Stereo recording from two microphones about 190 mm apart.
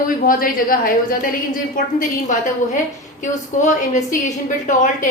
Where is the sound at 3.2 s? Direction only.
40° left (ahead or behind).